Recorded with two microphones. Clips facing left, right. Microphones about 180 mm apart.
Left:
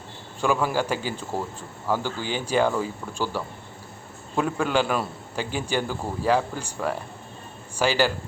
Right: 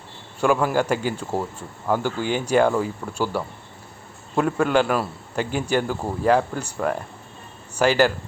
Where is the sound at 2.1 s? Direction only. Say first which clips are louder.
Right 5 dB; 50° right (ahead or behind).